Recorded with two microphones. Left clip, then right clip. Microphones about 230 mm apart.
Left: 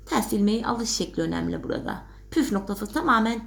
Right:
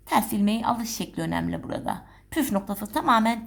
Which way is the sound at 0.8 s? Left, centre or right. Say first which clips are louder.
Left 5 dB; right.